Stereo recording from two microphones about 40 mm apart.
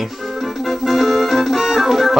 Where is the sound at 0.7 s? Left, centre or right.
Centre.